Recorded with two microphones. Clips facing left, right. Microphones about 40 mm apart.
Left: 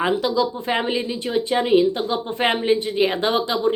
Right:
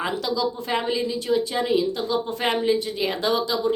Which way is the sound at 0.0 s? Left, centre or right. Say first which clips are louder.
Left 5 dB; left.